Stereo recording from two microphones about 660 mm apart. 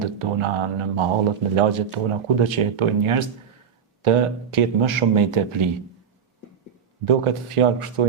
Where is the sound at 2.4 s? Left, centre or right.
Right.